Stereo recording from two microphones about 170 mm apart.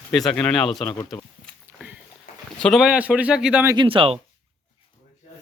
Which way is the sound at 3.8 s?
30° right (ahead or behind).